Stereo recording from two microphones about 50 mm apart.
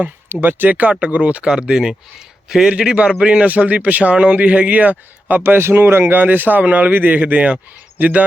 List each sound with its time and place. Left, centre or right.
0.4 s a man's voice: right
1.5 s a man's voice: centre
5.4 s speech: right